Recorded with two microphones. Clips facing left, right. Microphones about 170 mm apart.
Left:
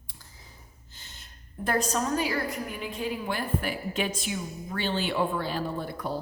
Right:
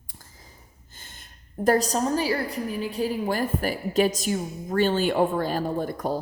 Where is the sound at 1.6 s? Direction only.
35° right (ahead or behind).